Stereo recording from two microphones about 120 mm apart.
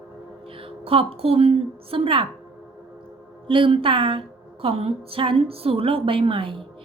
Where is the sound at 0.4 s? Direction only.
50° right (ahead or behind).